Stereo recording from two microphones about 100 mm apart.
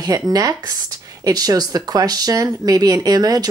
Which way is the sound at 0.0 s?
40° right (ahead or behind).